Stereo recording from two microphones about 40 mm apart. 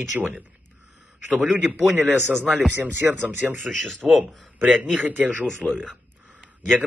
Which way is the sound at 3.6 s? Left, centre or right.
Centre.